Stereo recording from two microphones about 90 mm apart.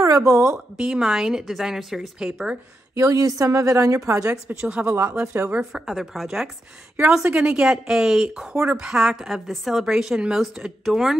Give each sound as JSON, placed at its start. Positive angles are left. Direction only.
{"t": 0.0, "sound": "speech", "side_deg": -35}
{"t": 0.7, "sound": "a woman's voice", "side_deg": -10}
{"t": 3.0, "sound": "a woman's voice", "side_deg": -40}
{"t": 4.6, "sound": "a woman's voice", "side_deg": -15}
{"t": 4.8, "sound": "a woman's voice", "side_deg": -30}
{"t": 5.6, "sound": "a woman's voice", "side_deg": -5}
{"t": 7.2, "sound": "a woman's voice", "side_deg": -15}